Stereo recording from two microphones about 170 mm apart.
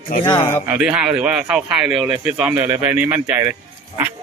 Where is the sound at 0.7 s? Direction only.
5° right (ahead or behind).